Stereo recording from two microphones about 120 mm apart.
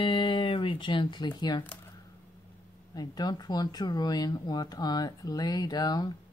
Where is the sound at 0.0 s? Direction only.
45° left (ahead or behind).